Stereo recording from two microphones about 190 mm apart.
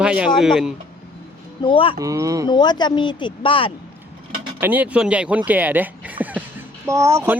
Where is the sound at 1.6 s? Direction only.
25° left (ahead or behind).